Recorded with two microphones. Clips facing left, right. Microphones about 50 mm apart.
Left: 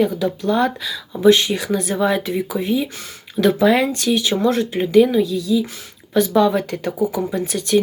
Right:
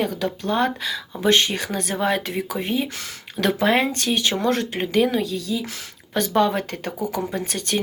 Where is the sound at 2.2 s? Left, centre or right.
Right.